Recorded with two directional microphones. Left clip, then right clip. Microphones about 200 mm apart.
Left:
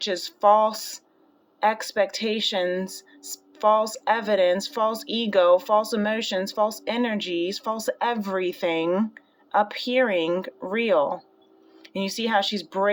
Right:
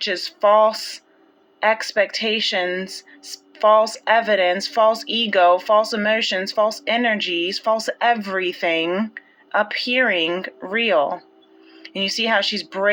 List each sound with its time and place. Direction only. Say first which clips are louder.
0.0 s speech: right 2 dB; 25° left (ahead or behind)